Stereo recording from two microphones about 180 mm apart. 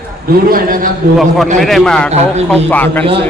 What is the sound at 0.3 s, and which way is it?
Speech, 55° right (ahead or behind).